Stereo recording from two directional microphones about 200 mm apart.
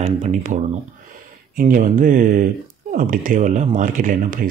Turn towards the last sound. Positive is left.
turn(degrees=-40)  # may be behind; listen again after turning